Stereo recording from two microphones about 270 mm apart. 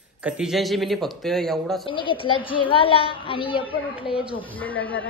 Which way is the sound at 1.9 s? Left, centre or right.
Centre.